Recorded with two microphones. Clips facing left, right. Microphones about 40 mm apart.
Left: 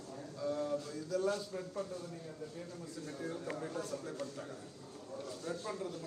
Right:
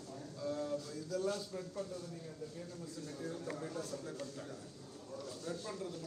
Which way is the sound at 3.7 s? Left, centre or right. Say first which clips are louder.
Left 2 dB; left.